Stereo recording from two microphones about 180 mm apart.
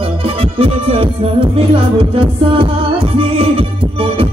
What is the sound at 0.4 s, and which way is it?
Music, 30° right (ahead or behind).